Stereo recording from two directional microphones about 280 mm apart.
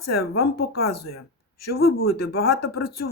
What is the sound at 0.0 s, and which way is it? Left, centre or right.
Speech, left.